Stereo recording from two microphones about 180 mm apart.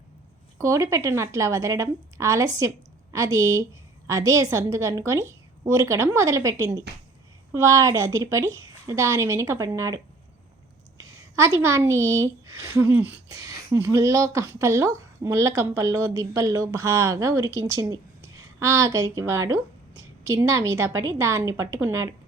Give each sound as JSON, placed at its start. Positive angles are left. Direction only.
{"t": 0.6, "sound": "a woman's voice", "side_deg": -15}